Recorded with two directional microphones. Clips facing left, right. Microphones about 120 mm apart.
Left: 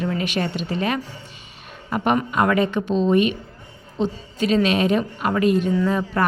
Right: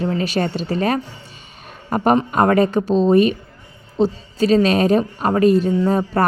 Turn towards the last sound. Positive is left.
turn(degrees=-35)  # may be behind; listen again after turning